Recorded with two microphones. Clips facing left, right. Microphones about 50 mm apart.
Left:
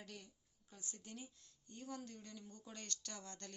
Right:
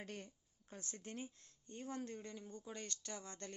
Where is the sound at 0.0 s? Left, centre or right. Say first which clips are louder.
Right 5 dB; right.